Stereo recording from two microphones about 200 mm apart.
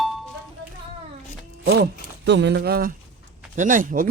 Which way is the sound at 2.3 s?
60° right (ahead or behind).